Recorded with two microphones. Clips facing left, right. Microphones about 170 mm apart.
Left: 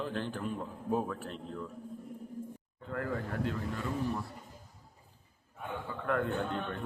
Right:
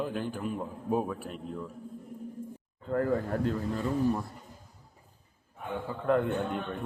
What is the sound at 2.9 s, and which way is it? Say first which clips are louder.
Speech: right 8 dB; 35° right (ahead or behind).